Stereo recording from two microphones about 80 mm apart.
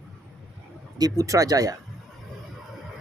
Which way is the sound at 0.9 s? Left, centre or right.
Right.